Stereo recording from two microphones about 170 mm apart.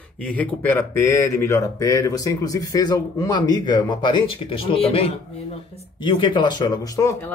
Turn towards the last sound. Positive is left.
turn(degrees=20)  # may be behind; listen again after turning